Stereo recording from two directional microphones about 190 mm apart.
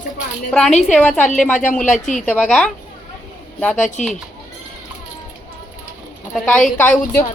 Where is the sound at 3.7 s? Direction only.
40° left (ahead or behind).